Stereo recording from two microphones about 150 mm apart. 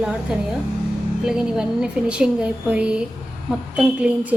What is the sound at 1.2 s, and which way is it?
A woman's voice, 5° right (ahead or behind).